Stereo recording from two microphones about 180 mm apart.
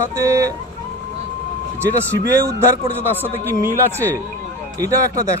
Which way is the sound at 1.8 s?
20° right (ahead or behind).